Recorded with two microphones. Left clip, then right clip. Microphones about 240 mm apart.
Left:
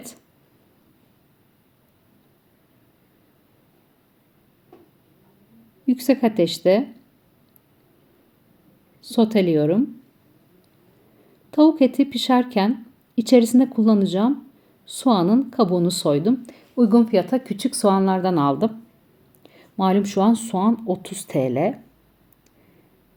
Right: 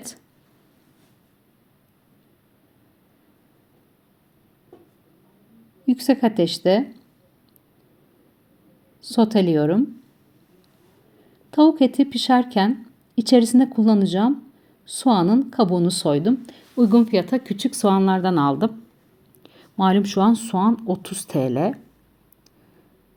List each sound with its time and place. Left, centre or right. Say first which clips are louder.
5.8 s a woman's voice: even; centre
9.1 s a woman's voice: even; centre
11.5 s a woman's voice: even; centre
19.4 s a sound: right 2 dB; centre
20.1 s a woman's voice: even; centre